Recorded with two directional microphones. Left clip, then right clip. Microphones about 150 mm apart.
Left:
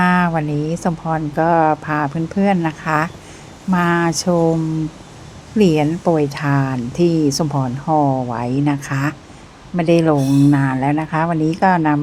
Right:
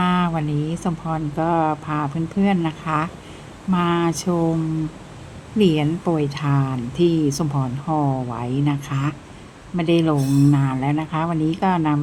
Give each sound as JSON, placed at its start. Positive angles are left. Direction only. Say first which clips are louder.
{"t": 0.0, "sound": "speech", "louder": "left 5 dB", "side_deg": 40}
{"t": 5.5, "sound": "speech", "louder": "left 4 dB", "side_deg": 40}